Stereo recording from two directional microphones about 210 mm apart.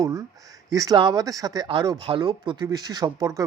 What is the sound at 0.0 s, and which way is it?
Speech, 15° right (ahead or behind).